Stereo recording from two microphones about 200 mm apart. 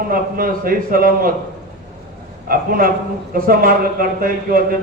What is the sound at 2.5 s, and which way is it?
A man's voice, 45° right (ahead or behind).